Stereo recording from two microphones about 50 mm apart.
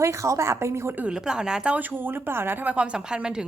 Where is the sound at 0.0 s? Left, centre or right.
Right.